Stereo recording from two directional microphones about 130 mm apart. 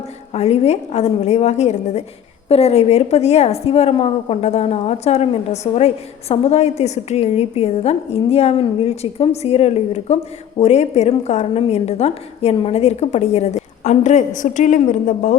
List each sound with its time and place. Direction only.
0.3 s a woman's voice: 55° left (ahead or behind); by 15.4 s 75° left (ahead or behind)